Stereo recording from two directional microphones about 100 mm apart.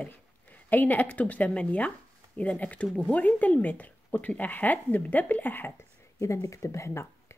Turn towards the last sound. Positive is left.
turn(degrees=25)  # may be behind; listen again after turning